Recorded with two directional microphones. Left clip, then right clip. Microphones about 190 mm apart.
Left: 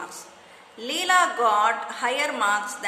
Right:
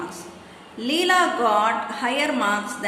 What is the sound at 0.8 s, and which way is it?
A woman's voice, 25° left (ahead or behind).